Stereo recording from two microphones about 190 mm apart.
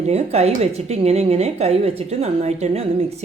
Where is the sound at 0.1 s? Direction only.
35° right (ahead or behind).